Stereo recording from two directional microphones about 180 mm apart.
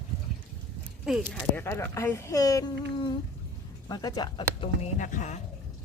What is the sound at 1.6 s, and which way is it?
Speech, 10° left (ahead or behind).